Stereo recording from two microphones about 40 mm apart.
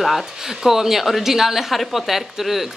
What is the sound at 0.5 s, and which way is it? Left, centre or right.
A woman's voice, centre.